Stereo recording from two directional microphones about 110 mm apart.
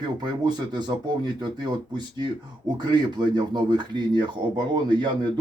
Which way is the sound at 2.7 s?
40° right (ahead or behind).